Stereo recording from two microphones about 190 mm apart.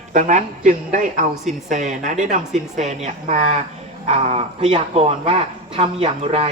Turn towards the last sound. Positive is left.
turn(degrees=-30)  # may be behind; listen again after turning